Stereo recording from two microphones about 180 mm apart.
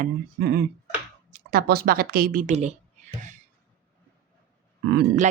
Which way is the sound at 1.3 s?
55° right (ahead or behind).